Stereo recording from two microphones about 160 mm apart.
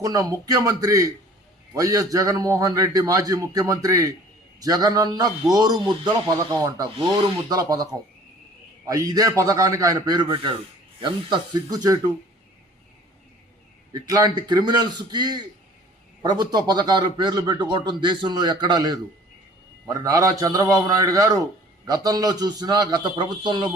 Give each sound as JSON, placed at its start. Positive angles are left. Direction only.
{"t": 0.0, "sound": "a man's voice", "side_deg": -20}
{"t": 13.9, "sound": "a man's voice", "side_deg": -25}